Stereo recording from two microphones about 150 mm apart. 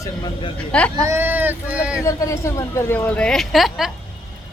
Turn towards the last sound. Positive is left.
turn(degrees=0)  # may be behind; listen again after turning